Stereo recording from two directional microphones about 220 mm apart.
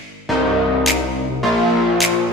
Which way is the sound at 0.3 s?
Centre (ahead or behind).